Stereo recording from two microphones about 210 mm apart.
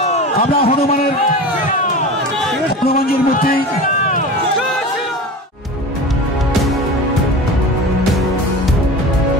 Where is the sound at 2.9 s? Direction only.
45° left (ahead or behind).